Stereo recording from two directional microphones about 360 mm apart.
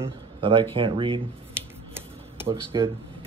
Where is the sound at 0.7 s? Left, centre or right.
Centre.